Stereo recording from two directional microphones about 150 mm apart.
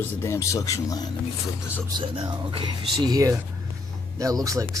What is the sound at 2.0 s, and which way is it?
A man's voice, 35° right (ahead or behind).